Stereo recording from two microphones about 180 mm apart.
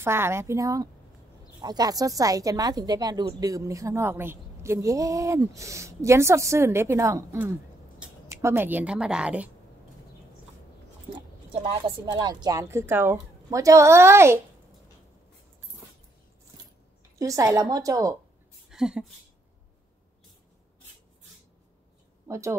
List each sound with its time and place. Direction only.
0.0 s a woman's voice: 15° right (ahead or behind)
12.1 s a woman's voice: 25° right (ahead or behind)
17.2 s a woman's voice: 20° right (ahead or behind)
18.7 s speech: 5° right (ahead or behind)
22.3 s a woman's voice: 15° right (ahead or behind)